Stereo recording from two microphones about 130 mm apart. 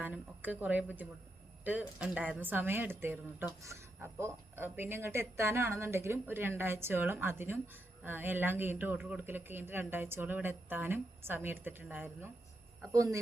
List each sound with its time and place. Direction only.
0.0 s a woman's voice: 15° right (ahead or behind)